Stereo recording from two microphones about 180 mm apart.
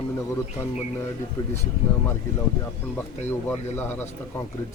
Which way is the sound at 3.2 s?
10° left (ahead or behind).